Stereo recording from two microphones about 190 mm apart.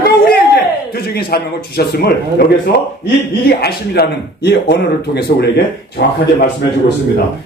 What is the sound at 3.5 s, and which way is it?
A man's voice, 55° left (ahead or behind).